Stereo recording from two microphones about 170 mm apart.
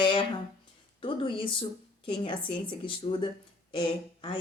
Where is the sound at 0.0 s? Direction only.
30° left (ahead or behind).